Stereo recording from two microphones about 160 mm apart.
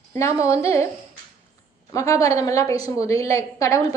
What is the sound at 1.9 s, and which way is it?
A woman's voice, 20° left (ahead or behind).